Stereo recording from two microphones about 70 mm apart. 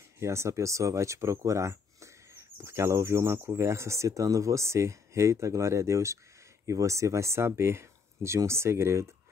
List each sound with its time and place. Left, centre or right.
0.2 s speech: right